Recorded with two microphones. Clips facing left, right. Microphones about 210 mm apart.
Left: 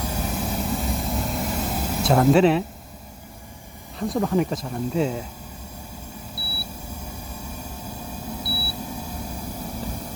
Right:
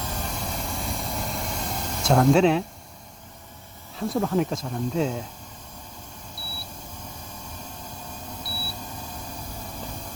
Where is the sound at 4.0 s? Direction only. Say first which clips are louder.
Left 2 dB; centre (ahead or behind).